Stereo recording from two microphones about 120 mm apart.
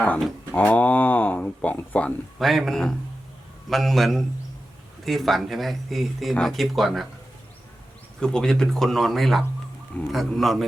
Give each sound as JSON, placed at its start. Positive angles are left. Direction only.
{"t": 0.5, "sound": "speech", "side_deg": 15}
{"t": 2.4, "sound": "speech", "side_deg": 0}
{"t": 8.2, "sound": "speech", "side_deg": 5}